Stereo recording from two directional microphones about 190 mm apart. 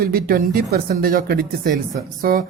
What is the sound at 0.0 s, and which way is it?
A woman's voice, 50° right (ahead or behind).